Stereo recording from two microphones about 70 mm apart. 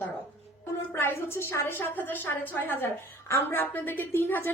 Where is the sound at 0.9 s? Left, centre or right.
Left.